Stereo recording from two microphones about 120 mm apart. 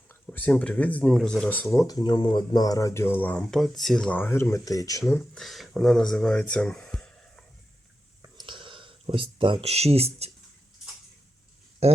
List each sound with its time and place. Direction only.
0.1 s speech: 15° left (ahead or behind)
1.7 s speech: 30° left (ahead or behind); by 3.4 s 15° left (ahead or behind)
3.4 s speech: centre (ahead or behind)
4.2 s speech: 20° left (ahead or behind)
5.3 s speech: centre (ahead or behind)
8.4 s a sound: 40° right (ahead or behind); by 10.3 s 60° right (ahead or behind)
11.8 s speech: 60° right (ahead or behind)